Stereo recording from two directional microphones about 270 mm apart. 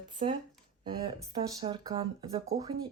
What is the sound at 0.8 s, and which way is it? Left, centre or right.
Speech, centre.